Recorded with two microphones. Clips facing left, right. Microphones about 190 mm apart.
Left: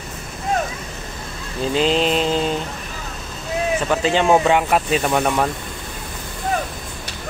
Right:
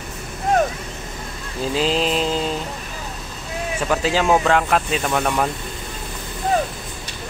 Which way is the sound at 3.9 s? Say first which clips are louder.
Left 1 dB; 5° right (ahead or behind).